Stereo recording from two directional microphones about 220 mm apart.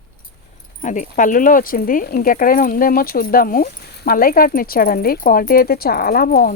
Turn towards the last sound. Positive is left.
turn(degrees=45)  # may be behind; listen again after turning